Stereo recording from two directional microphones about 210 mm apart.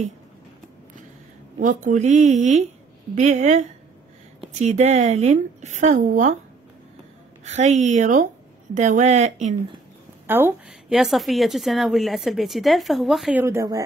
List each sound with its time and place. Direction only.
1.6 s a woman's voice: 40° right (ahead or behind)
7.4 s a woman's voice: 35° right (ahead or behind)
10.2 s a woman's voice: 10° right (ahead or behind)